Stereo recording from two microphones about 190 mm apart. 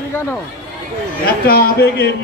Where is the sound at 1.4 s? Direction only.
55° left (ahead or behind).